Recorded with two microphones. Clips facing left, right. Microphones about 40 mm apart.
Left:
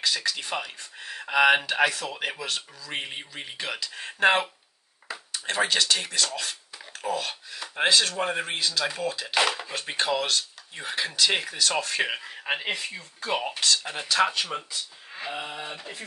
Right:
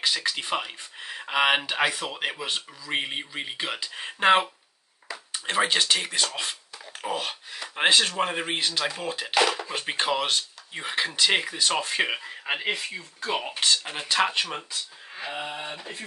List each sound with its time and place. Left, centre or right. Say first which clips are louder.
0.0 s speech: right 1 dB; right
8.5 s speech: even; right
9.3 s speech: right 3 dB; centre
9.8 s speech: even; right
12.0 s speech: right 1 dB; centre
14.0 s speech: left 1 dB; right
15.2 s speech: right 1 dB; centre